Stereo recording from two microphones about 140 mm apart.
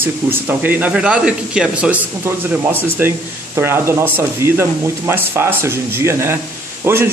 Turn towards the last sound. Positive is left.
turn(degrees=-15)  # may be behind; listen again after turning